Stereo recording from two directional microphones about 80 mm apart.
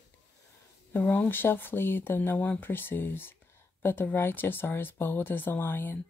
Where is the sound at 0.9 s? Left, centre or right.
Left.